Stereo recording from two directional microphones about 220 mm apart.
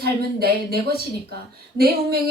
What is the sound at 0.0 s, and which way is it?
A woman's voice, 45° right (ahead or behind).